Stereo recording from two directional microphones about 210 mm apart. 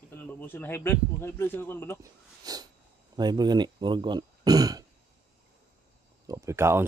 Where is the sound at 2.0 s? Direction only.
15° right (ahead or behind).